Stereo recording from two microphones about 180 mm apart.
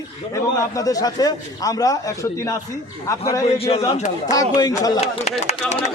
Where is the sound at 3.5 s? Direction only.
30° left (ahead or behind).